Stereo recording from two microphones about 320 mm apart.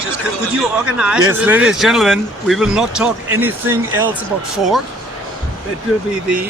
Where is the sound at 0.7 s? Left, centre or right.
Centre.